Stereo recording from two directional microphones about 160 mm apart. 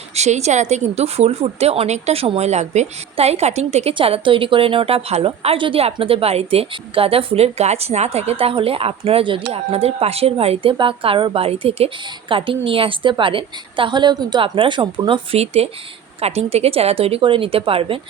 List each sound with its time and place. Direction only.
0.2 s a woman's voice: 45° right (ahead or behind)